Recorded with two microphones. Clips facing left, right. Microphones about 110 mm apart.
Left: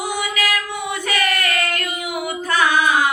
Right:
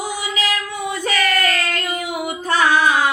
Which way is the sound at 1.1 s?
15° left (ahead or behind).